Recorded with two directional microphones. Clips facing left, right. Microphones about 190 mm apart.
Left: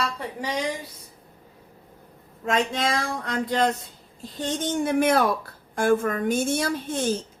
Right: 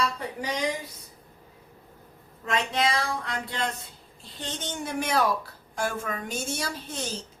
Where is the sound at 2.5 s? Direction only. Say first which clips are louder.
Left 2 dB; 45° left (ahead or behind).